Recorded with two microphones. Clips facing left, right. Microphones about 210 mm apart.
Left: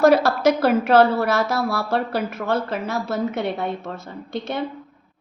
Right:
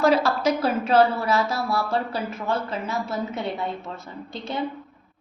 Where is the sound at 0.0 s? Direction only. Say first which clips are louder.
Left 4 dB; 70° left (ahead or behind).